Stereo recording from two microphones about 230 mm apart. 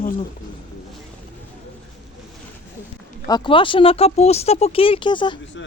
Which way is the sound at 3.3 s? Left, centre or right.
Centre.